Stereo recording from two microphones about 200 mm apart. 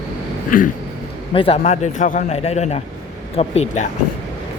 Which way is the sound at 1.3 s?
25° left (ahead or behind).